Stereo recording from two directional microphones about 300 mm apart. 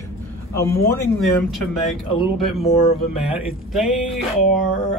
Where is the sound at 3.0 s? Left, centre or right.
Centre.